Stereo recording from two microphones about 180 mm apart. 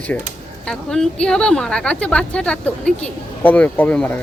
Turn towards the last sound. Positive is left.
turn(degrees=10)  # may be behind; listen again after turning